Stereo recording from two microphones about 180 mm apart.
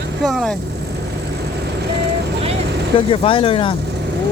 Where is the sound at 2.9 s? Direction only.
30° left (ahead or behind).